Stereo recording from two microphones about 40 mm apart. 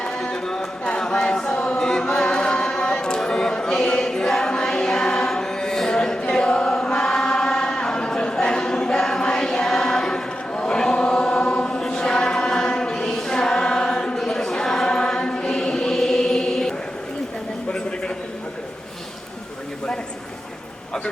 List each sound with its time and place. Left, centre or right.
0.0 s a sound: centre
1.5 s chant: left
1.8 s chant: centre
2.2 s a sound: left
10.5 s chant: left
11.8 s choir: centre
14.2 s chant: centre